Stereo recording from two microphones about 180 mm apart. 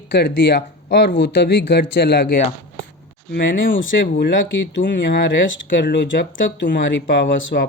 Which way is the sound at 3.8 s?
70° left (ahead or behind).